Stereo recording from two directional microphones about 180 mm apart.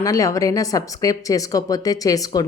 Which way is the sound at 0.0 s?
15° left (ahead or behind).